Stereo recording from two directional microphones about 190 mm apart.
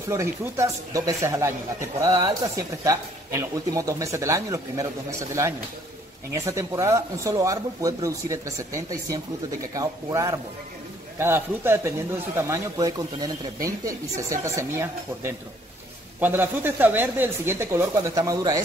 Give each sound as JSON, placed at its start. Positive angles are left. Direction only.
{"t": 0.1, "sound": "speech", "side_deg": -15}
{"t": 6.3, "sound": "speech", "side_deg": -15}